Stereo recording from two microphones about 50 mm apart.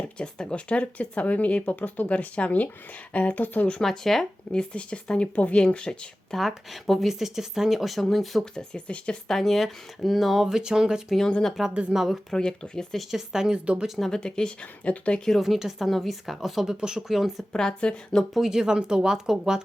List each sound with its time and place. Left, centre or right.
0.2 s speech: centre; by 3.7 s left
3.7 s speech: centre
4.7 s speech: left
6.3 s speech: centre
7.1 s speech: centre
8.5 s speech: centre
9.3 s speech: centre; by 11.9 s right
11.9 s speech: centre
12.3 s speech: centre
13.1 s speech: centre
14.0 s speech: centre
15.4 s speech: centre
17.5 s speech: centre
18.3 s speech: centre